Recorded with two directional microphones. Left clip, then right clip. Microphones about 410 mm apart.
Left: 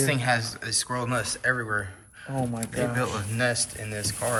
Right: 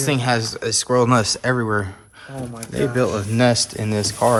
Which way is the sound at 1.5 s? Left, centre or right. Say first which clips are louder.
Right 7 dB; right.